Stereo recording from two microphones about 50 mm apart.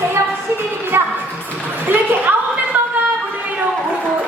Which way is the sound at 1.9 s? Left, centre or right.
Right.